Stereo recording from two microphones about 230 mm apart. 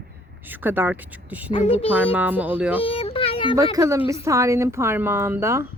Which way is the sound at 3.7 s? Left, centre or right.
Centre.